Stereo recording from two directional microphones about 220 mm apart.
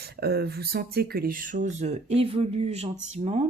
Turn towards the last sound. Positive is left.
turn(degrees=-30)  # may be behind; listen again after turning